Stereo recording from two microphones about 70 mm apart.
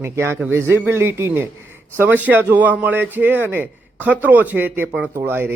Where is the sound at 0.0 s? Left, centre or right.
Right.